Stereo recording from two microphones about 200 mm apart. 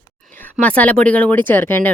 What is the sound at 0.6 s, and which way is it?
Speech, 5° left (ahead or behind).